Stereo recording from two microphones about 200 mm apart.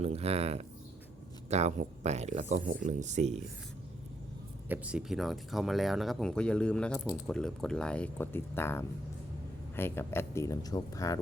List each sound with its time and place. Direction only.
0.0 s speech: 30° right (ahead or behind)
4.7 s speech: 5° right (ahead or behind); by 11.2 s 15° left (ahead or behind)